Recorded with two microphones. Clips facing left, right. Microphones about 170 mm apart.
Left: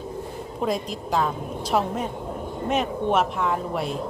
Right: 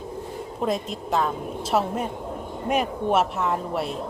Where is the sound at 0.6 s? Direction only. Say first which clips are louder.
Even; centre (ahead or behind).